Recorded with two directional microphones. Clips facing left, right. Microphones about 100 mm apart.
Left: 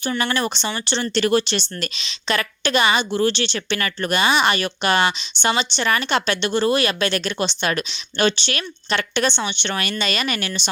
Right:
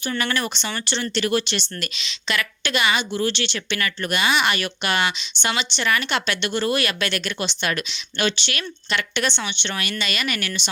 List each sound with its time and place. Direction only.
0.2 s a woman's voice: 25° left (ahead or behind)